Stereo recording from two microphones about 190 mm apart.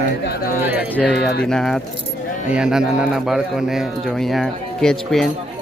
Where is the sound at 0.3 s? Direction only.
50° left (ahead or behind).